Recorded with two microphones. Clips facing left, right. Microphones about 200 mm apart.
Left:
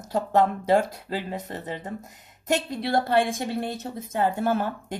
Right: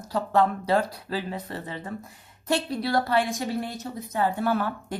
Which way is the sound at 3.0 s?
55° left (ahead or behind).